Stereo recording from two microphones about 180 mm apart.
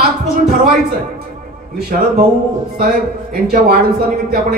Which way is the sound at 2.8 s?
55° right (ahead or behind).